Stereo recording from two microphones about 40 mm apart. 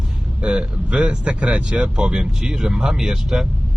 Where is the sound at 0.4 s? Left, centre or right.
Right.